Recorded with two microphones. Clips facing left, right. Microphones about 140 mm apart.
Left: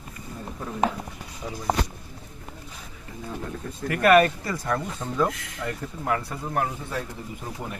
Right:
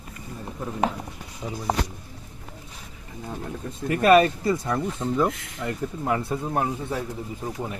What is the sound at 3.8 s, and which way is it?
Speech, 25° right (ahead or behind).